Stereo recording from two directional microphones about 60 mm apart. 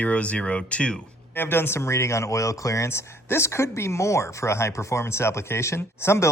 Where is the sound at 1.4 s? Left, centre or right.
Left.